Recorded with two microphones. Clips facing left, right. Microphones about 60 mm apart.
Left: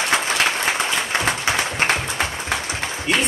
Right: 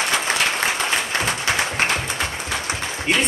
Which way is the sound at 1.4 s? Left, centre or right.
Left.